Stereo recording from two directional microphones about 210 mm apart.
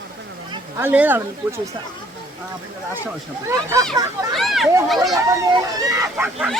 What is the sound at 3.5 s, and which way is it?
Speech, 15° right (ahead or behind).